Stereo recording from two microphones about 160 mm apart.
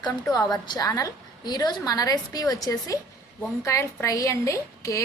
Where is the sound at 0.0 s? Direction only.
20° left (ahead or behind).